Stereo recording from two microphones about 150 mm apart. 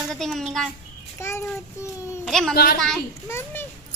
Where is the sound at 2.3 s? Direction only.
Centre (ahead or behind).